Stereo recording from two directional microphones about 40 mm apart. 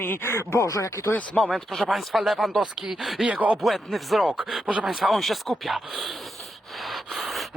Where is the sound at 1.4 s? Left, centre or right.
Centre.